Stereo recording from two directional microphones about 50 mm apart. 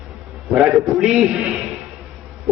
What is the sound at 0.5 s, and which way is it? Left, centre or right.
Speech, centre.